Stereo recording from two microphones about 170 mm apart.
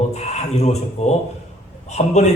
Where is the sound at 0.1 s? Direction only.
40° left (ahead or behind).